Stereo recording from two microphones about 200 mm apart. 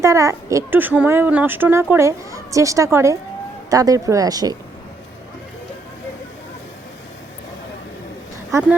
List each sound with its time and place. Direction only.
0.0 s speech: 15° right (ahead or behind)